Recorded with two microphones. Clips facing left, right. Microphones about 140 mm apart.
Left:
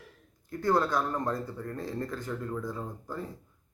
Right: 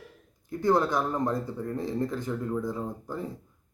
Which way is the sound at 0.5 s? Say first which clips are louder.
Right 2 dB; 15° right (ahead or behind).